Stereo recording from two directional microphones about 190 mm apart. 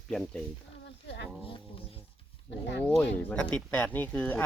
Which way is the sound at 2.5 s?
65° left (ahead or behind).